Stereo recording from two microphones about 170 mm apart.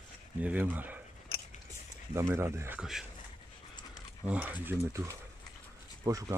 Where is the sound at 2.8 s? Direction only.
5° right (ahead or behind).